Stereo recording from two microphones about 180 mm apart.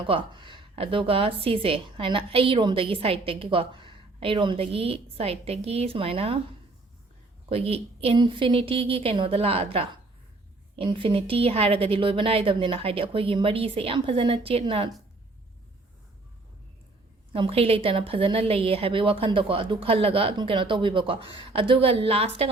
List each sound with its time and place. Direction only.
0.0 s speech: 30° right (ahead or behind)
7.5 s speech: 35° right (ahead or behind)
17.3 s speech: 30° right (ahead or behind)